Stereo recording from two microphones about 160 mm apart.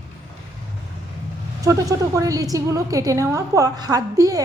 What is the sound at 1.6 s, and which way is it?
A woman's voice, 20° right (ahead or behind).